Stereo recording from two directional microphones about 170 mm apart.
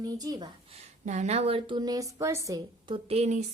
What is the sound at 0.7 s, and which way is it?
Speech, 45° right (ahead or behind).